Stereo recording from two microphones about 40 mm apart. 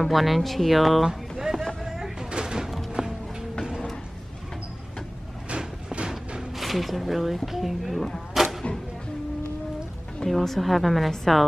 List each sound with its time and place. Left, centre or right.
0.0 s speech: centre
1.4 s run: centre
1.8 s music: centre
5.6 s music: centre
6.5 s speech: centre
8.4 s a sound: centre
10.2 s speech: centre